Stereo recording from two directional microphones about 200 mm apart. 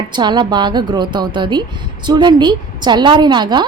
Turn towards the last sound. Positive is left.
turn(degrees=-20)  # may be behind; listen again after turning